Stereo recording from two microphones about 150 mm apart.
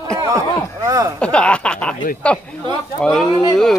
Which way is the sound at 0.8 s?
20° right (ahead or behind).